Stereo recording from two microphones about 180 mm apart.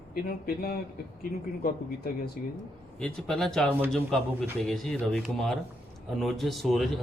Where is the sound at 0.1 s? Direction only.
55° left (ahead or behind).